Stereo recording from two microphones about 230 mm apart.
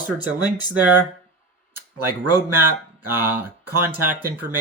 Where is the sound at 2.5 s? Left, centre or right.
Centre.